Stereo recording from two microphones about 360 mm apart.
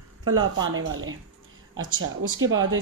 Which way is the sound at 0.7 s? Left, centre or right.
Right.